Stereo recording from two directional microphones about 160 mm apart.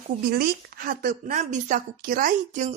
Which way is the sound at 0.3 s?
65° right (ahead or behind).